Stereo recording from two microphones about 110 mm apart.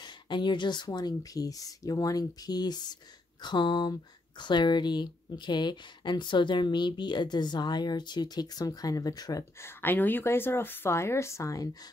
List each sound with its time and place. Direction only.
0.0 s speech: 45° left (ahead or behind)
9.6 s a woman's voice: 20° left (ahead or behind)